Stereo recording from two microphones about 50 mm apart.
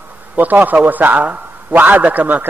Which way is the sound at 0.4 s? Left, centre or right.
Right.